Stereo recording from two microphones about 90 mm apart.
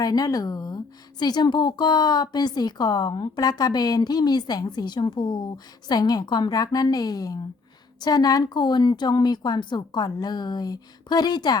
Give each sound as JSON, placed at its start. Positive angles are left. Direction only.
{"t": 0.0, "sound": "speech", "side_deg": 45}
{"t": 5.9, "sound": "speech", "side_deg": 45}